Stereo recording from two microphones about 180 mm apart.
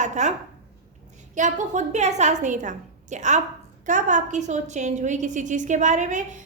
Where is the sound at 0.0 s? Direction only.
40° right (ahead or behind).